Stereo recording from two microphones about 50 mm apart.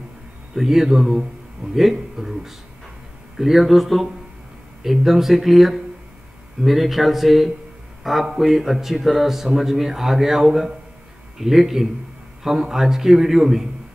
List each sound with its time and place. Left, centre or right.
0.6 s a man's voice: centre